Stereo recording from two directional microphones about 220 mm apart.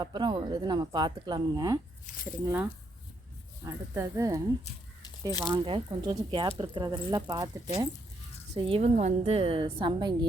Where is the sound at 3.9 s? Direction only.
15° right (ahead or behind).